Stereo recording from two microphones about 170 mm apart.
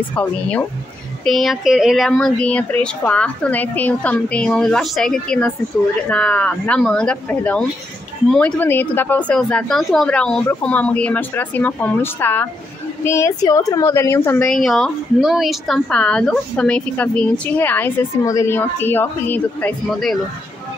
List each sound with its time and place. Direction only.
0.1 s speech: 10° left (ahead or behind)
14.5 s speech: centre (ahead or behind)